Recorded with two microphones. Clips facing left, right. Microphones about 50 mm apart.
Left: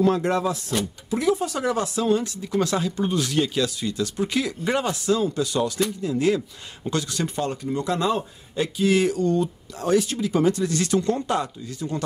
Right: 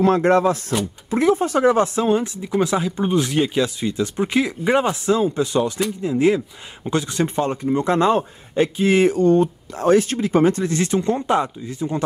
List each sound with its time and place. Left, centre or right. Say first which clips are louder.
0.0 s speech: right 5 dB; right